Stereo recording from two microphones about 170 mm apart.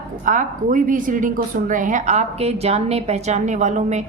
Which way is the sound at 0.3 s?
50° right (ahead or behind).